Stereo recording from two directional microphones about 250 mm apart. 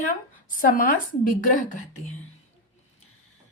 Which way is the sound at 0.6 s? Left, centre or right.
Left.